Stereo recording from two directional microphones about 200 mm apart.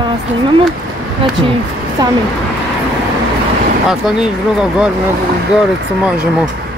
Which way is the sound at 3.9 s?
5° right (ahead or behind).